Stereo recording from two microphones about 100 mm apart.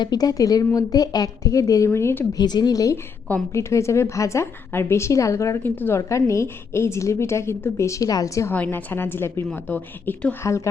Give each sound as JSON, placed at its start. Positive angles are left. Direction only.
{"t": 0.0, "sound": "a woman's voice", "side_deg": 40}
{"t": 2.4, "sound": "a woman's voice", "side_deg": 45}
{"t": 5.6, "sound": "a woman's voice", "side_deg": 20}
{"t": 6.0, "sound": "a woman's voice", "side_deg": 30}
{"t": 8.4, "sound": "a woman's voice", "side_deg": 20}
{"t": 10.4, "sound": "a woman's voice", "side_deg": 30}